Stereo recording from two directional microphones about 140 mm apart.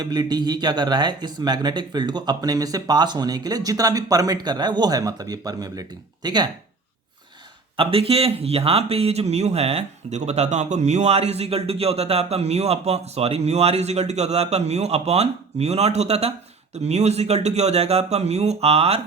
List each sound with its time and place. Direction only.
0.0 s speech: 30° right (ahead or behind)
7.8 s speech: 40° right (ahead or behind)